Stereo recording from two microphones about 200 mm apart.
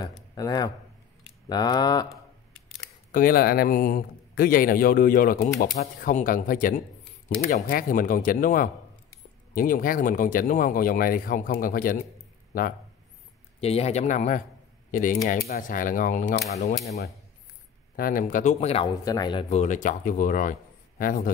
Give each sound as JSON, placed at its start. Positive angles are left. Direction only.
{"t": 0.0, "sound": "speech", "side_deg": 20}
{"t": 3.1, "sound": "a man's voice", "side_deg": 45}
{"t": 13.6, "sound": "speech", "side_deg": 30}
{"t": 17.9, "sound": "speech", "side_deg": 45}
{"t": 19.5, "sound": "a man's voice", "side_deg": 35}